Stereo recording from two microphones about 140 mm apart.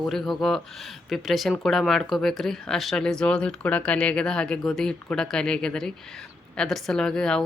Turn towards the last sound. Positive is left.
turn(degrees=5)  # may be behind; listen again after turning